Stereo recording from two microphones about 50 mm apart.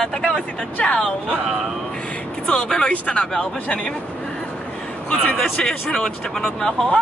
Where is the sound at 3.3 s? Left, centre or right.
Centre.